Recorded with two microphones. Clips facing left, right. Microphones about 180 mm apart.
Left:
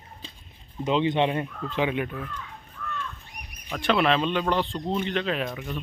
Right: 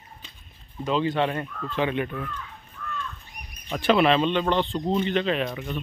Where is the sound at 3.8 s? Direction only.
5° right (ahead or behind).